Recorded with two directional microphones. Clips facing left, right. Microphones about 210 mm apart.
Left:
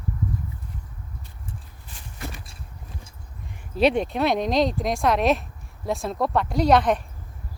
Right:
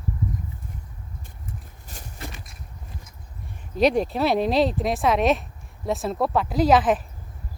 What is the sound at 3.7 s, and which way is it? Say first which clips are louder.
Speech: even; centre (ahead or behind).